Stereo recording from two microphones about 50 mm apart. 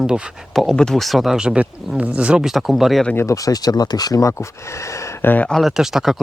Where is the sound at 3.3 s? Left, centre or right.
Left.